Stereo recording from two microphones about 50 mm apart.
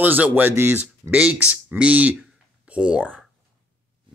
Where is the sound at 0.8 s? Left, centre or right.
Right.